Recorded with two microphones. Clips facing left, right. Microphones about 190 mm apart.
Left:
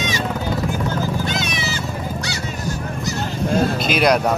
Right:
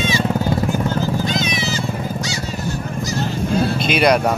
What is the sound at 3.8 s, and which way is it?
Speech, centre (ahead or behind).